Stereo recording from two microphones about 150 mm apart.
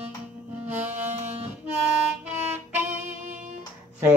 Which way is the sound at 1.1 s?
50° right (ahead or behind).